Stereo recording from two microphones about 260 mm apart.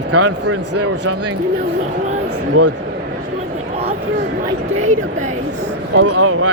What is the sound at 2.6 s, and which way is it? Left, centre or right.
Speech, right.